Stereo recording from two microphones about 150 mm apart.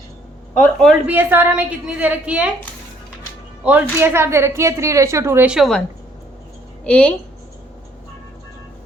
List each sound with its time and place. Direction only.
0.6 s a man's voice: centre (ahead or behind)
1.0 s a woman's voice: 10° right (ahead or behind)
3.6 s a woman's voice: 10° right (ahead or behind)
5.5 s a man's voice: centre (ahead or behind)
6.8 s a woman's voice: 10° left (ahead or behind)